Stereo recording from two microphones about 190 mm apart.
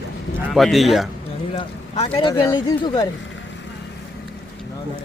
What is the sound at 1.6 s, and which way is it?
Speech, 30° left (ahead or behind).